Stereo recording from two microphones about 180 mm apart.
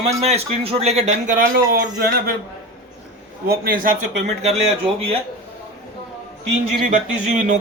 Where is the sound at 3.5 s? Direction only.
55° right (ahead or behind).